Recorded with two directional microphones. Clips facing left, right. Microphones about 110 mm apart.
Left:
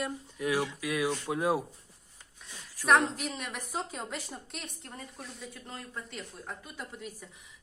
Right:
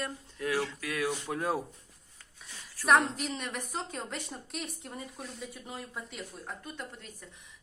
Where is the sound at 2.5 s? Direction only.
15° left (ahead or behind).